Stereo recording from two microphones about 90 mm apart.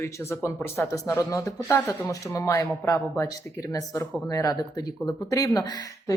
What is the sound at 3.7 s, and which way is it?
Speech, 40° left (ahead or behind).